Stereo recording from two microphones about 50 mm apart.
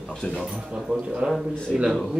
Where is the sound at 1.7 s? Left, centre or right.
Centre.